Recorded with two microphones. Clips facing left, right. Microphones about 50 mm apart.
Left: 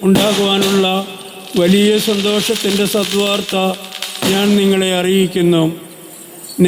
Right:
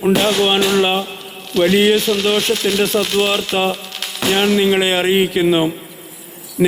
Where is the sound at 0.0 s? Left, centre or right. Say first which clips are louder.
Left 2 dB; right.